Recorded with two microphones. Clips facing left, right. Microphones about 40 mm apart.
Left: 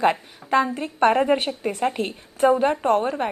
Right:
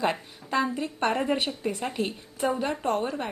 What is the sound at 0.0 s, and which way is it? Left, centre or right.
A woman's voice, left.